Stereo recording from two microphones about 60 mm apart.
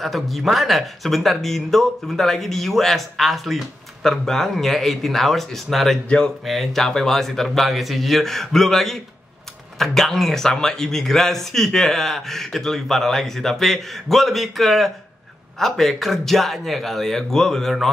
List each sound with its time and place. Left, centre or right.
0.0 s speech: centre
6.0 s speech: centre
6.4 s speech: centre